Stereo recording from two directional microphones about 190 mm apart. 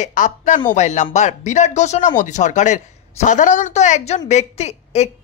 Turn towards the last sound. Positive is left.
turn(degrees=35)  # may be behind; listen again after turning